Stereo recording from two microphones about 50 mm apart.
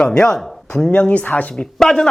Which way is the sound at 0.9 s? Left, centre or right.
Left.